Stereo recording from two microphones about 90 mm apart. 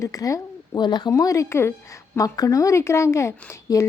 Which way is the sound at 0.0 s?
40° left (ahead or behind).